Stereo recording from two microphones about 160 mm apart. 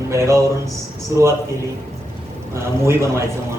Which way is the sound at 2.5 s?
15° right (ahead or behind).